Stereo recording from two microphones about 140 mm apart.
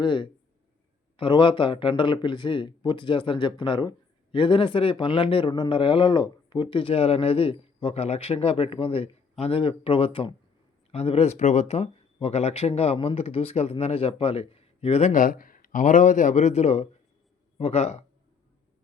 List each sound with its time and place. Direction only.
0.0 s a man's voice: 35° left (ahead or behind)
15.1 s speech: 85° left; by 18.0 s 50° left (ahead or behind)